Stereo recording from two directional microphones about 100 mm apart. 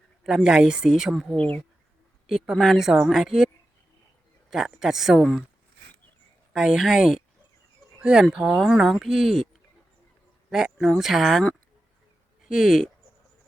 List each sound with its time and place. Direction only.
0.3 s a woman's voice: 5° right (ahead or behind)
1.4 s speech: 15° left (ahead or behind)
2.2 s a woman's voice: centre (ahead or behind)
4.7 s a woman's voice: 5° right (ahead or behind)
6.5 s a woman's voice: 5° right (ahead or behind)